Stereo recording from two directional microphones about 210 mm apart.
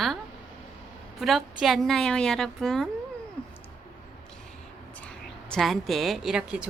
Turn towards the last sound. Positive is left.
turn(degrees=-5)  # may be behind; listen again after turning